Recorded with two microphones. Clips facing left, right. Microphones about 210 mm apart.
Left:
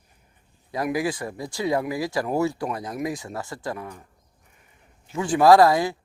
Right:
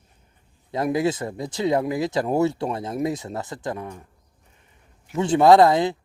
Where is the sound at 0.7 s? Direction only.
25° right (ahead or behind).